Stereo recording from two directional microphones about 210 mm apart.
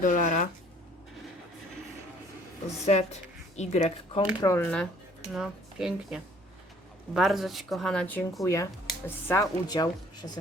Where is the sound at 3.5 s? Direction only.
30° left (ahead or behind).